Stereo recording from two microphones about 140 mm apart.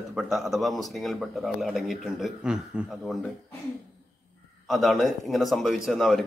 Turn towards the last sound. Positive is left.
turn(degrees=0)  # may be behind; listen again after turning